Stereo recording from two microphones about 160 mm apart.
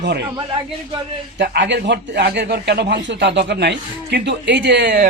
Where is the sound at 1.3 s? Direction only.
90° right.